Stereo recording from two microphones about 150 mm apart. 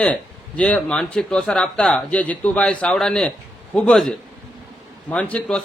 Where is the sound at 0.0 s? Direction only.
10° left (ahead or behind).